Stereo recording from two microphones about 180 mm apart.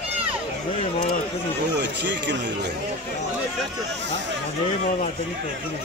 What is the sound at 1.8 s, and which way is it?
Speech, 75° right (ahead or behind).